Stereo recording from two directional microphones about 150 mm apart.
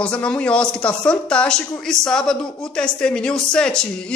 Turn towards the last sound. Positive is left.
turn(degrees=5)  # may be behind; listen again after turning